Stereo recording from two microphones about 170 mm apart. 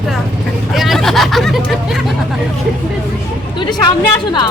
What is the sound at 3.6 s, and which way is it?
Speech, 25° left (ahead or behind).